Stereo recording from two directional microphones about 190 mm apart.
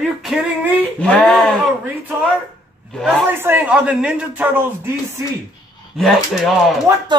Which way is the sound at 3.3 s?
10° right (ahead or behind).